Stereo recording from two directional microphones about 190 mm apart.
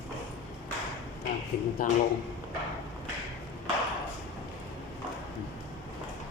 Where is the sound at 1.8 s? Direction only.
50° left (ahead or behind).